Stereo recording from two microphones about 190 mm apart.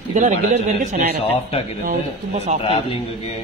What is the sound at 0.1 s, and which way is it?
A man's voice, 40° right (ahead or behind).